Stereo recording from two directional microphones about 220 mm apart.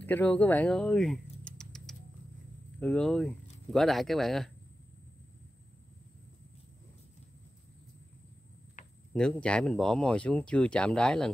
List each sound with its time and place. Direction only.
0.0 s speech: 5° left (ahead or behind)
8.8 s a sound: 35° left (ahead or behind)
9.1 s speech: 5° left (ahead or behind)